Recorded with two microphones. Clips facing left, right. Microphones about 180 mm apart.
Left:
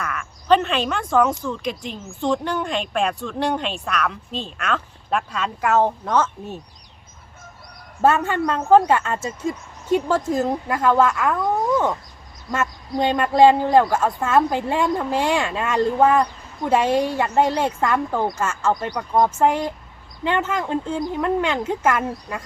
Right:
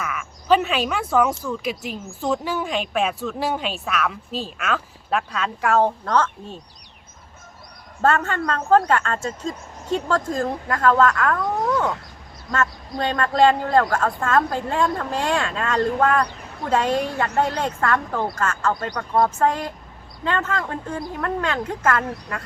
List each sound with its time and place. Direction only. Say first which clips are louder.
0.0 s a sound: even; 5° right (ahead or behind)
1.5 s speech: even; 5° right (ahead or behind)
8.0 s a man's voice: left 2 dB; 10° left (ahead or behind)
12.5 s a man's voice: even; 15° left (ahead or behind)